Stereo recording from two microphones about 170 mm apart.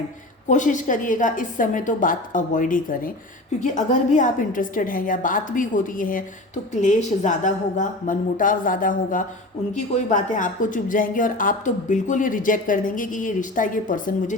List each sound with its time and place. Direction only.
0.4 s speech: 45° left (ahead or behind)